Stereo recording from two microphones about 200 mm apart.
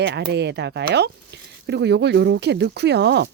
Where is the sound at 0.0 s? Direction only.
55° right (ahead or behind).